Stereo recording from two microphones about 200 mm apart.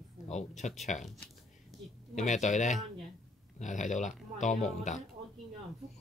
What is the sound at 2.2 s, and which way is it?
Speech, 35° left (ahead or behind).